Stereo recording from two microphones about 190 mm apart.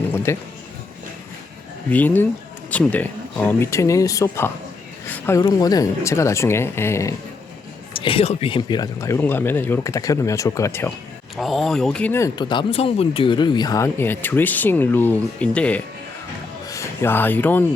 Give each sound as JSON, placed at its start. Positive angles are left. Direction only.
{"t": 0.1, "sound": "a sound", "side_deg": 10}
{"t": 1.9, "sound": "speech", "side_deg": 10}
{"t": 8.0, "sound": "speech", "side_deg": 30}
{"t": 11.3, "sound": "speech", "side_deg": 0}